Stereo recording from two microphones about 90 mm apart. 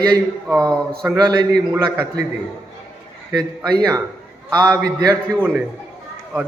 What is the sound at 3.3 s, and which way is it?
A man's voice, 50° right (ahead or behind).